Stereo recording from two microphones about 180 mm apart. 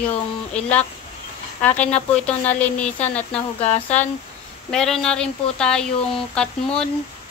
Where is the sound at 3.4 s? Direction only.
35° left (ahead or behind).